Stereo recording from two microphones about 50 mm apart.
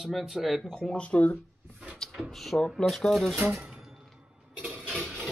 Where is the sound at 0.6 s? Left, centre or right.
Centre.